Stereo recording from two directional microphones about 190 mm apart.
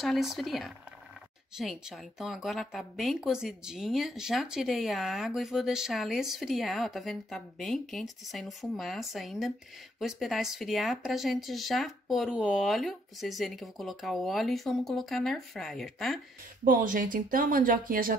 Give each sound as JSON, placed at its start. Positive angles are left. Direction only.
{"t": 0.0, "sound": "a woman's voice", "side_deg": 0}
{"t": 16.6, "sound": "speech", "side_deg": -45}